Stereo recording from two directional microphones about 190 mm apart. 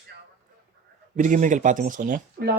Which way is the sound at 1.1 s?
40° right (ahead or behind).